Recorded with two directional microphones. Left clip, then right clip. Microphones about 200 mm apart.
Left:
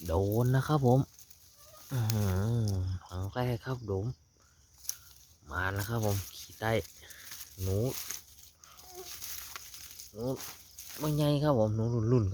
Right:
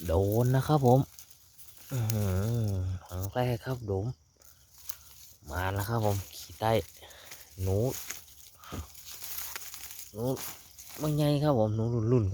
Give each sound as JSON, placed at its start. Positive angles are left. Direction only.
{"t": 0.0, "sound": "speech", "side_deg": -5}
{"t": 5.5, "sound": "speech", "side_deg": -5}
{"t": 6.3, "sound": "a sound", "side_deg": -5}
{"t": 7.6, "sound": "speech", "side_deg": -5}
{"t": 9.5, "sound": "a sound", "side_deg": -20}
{"t": 10.2, "sound": "speech", "side_deg": -15}
{"t": 10.8, "sound": "speech", "side_deg": 0}